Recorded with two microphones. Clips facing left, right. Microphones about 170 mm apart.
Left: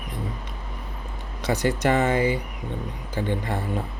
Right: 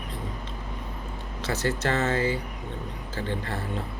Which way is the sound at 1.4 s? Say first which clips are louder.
Left 4 dB; 15° left (ahead or behind).